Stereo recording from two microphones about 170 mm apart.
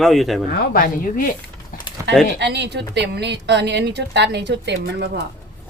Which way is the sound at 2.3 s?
80° right.